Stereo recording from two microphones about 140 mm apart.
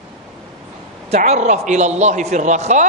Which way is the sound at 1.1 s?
50° right (ahead or behind).